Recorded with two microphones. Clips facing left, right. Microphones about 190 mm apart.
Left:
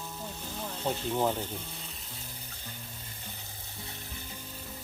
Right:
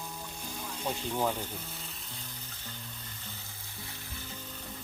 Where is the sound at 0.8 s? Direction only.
15° left (ahead or behind).